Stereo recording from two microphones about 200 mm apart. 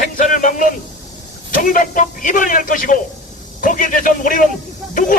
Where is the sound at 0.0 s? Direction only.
40° left (ahead or behind).